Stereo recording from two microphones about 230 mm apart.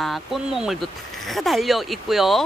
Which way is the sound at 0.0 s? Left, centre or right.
Centre.